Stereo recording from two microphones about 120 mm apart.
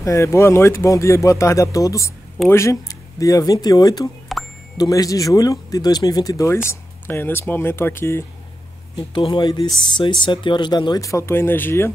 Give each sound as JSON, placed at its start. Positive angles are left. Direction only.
{"t": 0.0, "sound": "speech", "side_deg": 25}
{"t": 4.3, "sound": "plop", "side_deg": 0}
{"t": 4.7, "sound": "speech", "side_deg": 30}
{"t": 9.2, "sound": "speech", "side_deg": 40}